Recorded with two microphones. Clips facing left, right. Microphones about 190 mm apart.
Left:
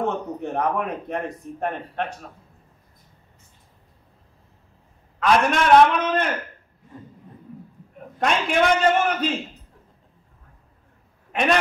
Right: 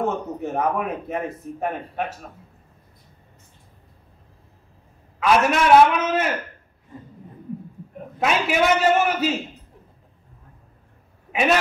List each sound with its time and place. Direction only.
0.0 s speech: 5° right (ahead or behind)
5.2 s speech: 5° right (ahead or behind)
8.2 s speech: 5° right (ahead or behind)